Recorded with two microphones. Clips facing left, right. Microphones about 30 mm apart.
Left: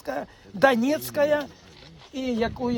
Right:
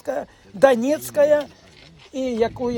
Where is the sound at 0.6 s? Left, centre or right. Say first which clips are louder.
Right 4 dB; left.